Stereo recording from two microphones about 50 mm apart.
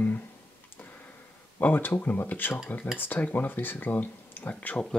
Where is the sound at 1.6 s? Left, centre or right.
Left.